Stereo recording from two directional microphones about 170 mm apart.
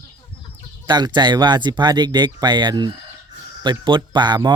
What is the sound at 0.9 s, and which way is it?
Speech, 25° right (ahead or behind).